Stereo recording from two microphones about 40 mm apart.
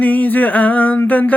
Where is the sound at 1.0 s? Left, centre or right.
Left.